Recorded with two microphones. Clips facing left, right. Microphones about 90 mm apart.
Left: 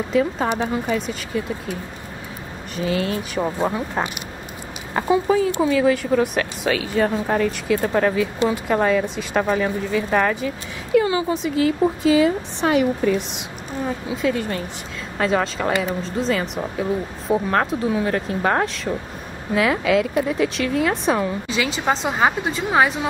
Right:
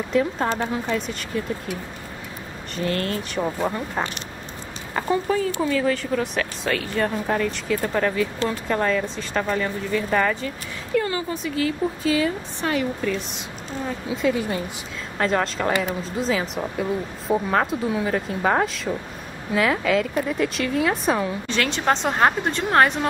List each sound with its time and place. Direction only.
0.1 s speech: centre (ahead or behind)
2.7 s a woman's voice: 5° left (ahead or behind)
14.0 s speech: centre (ahead or behind)